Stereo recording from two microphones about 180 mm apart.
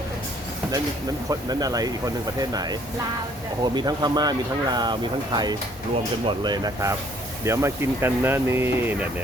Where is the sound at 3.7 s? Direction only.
20° right (ahead or behind).